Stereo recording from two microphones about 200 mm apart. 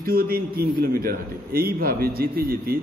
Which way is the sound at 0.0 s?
50° right (ahead or behind).